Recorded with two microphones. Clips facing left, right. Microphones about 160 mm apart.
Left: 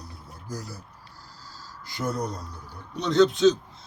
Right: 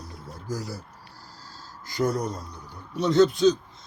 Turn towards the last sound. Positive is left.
turn(degrees=0)  # may be behind; listen again after turning